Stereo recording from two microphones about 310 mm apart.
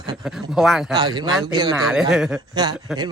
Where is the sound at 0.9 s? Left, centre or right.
Centre.